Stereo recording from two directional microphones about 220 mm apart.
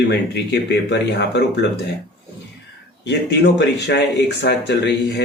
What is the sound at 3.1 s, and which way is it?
Speech, 50° left (ahead or behind).